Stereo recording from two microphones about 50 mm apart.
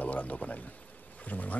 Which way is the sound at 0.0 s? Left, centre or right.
Left.